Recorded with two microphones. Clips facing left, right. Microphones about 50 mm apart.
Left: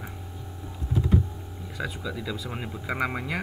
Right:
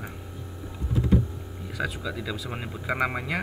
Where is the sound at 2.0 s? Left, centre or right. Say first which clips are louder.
Right 1 dB; centre.